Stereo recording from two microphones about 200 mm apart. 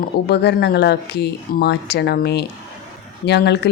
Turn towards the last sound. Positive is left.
turn(degrees=55)  # may be behind; listen again after turning